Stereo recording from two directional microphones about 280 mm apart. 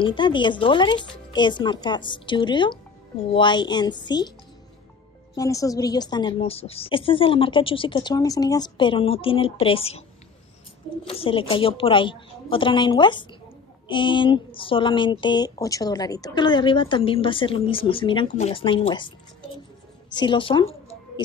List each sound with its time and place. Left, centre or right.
0.0 s speech: centre
5.3 s speech: centre
11.1 s speech: centre